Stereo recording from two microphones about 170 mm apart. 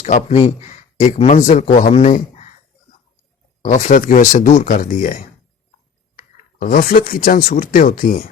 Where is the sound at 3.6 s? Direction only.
50° left (ahead or behind).